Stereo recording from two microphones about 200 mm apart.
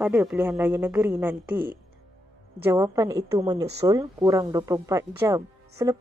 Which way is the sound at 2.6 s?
15° right (ahead or behind).